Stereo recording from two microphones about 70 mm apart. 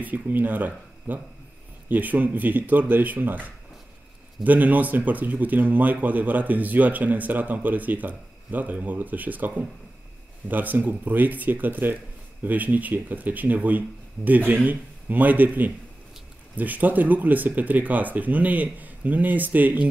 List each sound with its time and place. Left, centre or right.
0.0 s speech: right